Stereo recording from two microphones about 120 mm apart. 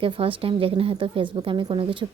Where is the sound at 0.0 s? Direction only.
50° right (ahead or behind).